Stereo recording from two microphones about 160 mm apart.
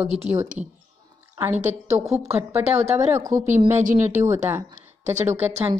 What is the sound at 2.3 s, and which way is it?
A woman's voice, 15° right (ahead or behind).